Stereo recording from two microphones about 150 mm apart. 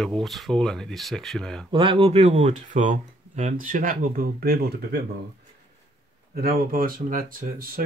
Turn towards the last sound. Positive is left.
turn(degrees=-70)  # may be behind; listen again after turning